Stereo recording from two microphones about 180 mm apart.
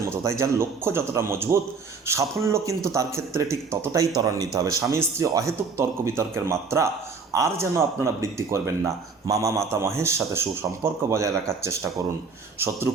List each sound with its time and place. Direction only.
0.0 s speech: 15° right (ahead or behind)